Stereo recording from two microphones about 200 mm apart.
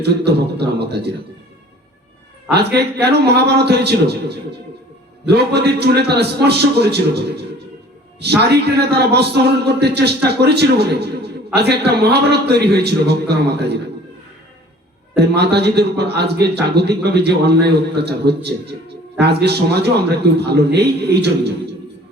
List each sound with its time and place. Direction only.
0.3 s a man's voice: 55° right (ahead or behind)
2.5 s a man's voice: 55° right (ahead or behind)
15.1 s a man's voice: 55° right (ahead or behind)